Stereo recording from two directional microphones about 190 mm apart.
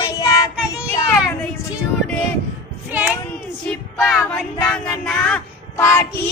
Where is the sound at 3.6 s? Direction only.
5° left (ahead or behind).